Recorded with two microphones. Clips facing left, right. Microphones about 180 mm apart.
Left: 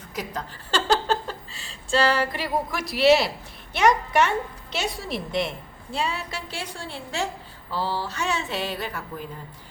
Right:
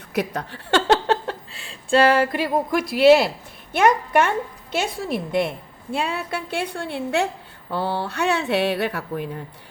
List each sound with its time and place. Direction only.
0.1 s speech: 65° right (ahead or behind)